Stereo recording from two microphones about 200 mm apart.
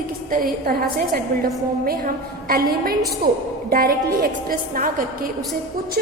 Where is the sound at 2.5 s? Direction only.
45° right (ahead or behind).